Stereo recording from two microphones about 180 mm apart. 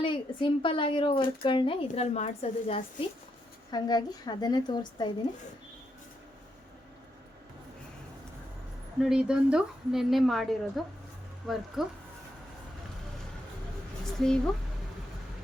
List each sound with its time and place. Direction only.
0.0 s speech: 30° left (ahead or behind)
3.7 s speech: 20° left (ahead or behind)
9.0 s a woman's voice: 5° right (ahead or behind)
14.0 s a sound: 5° left (ahead or behind)